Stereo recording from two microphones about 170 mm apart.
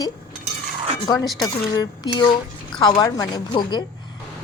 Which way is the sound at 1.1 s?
20° left (ahead or behind).